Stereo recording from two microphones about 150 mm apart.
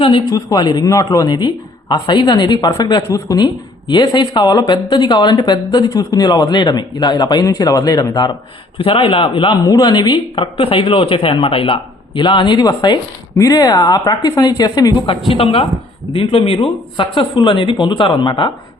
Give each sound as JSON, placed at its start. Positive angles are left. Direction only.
{"t": 0.0, "sound": "a woman's voice", "side_deg": 30}